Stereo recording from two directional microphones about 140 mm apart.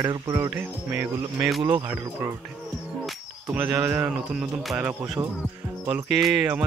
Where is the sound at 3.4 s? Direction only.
10° right (ahead or behind).